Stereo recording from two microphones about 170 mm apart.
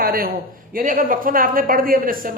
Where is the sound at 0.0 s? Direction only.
60° right (ahead or behind).